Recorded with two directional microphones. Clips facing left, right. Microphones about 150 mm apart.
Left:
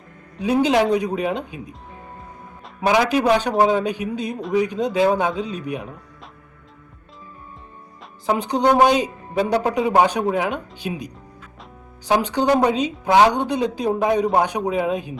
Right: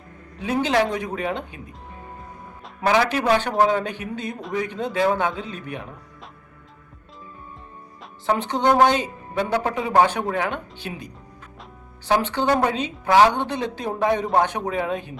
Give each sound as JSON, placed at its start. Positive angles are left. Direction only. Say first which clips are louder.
{"t": 0.4, "sound": "a woman's voice", "louder": "left 4 dB", "side_deg": 15}
{"t": 2.8, "sound": "a woman's voice", "louder": "left 2 dB", "side_deg": 15}
{"t": 8.3, "sound": "a woman's voice", "louder": "left 2 dB", "side_deg": 10}